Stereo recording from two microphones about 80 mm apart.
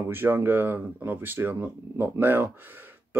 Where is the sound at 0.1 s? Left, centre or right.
Right.